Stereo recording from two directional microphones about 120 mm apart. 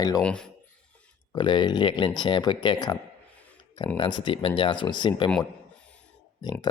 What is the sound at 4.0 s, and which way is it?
Speech, 40° left (ahead or behind).